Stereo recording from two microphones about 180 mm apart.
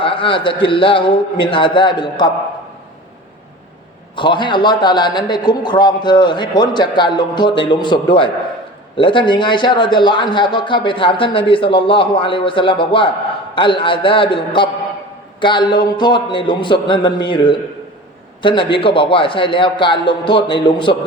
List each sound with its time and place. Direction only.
0.0 s a man's voice: 30° left (ahead or behind)
4.1 s a man's voice: 25° left (ahead or behind)